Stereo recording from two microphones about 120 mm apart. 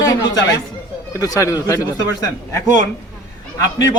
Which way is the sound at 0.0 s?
30° left (ahead or behind).